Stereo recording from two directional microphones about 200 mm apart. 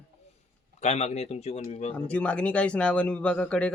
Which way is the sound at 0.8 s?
35° left (ahead or behind).